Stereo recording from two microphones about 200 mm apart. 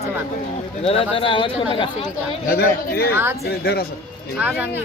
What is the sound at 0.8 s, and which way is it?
Speech, 30° left (ahead or behind).